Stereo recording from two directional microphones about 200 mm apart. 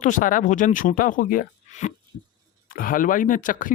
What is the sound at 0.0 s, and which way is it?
Speech, 40° left (ahead or behind).